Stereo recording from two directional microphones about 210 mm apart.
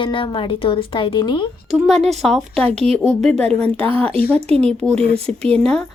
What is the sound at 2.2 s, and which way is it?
A woman's voice, centre (ahead or behind).